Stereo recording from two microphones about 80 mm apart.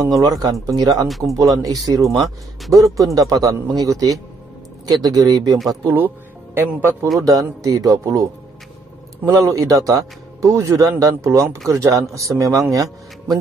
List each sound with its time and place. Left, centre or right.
0.0 s speech: right
1.0 s speech: centre
1.3 s speech: right
2.1 s speech: centre
2.7 s speech: right
5.9 s speech: right
7.2 s speech: right
9.2 s speech: right